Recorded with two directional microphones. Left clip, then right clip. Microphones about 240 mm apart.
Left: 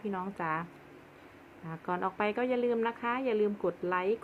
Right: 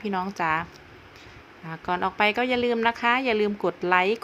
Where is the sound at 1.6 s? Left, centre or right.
Centre.